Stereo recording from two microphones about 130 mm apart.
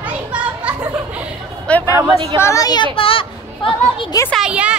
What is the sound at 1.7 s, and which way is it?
Speech, 10° left (ahead or behind).